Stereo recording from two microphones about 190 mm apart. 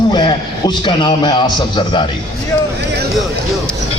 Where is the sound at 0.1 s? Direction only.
20° left (ahead or behind).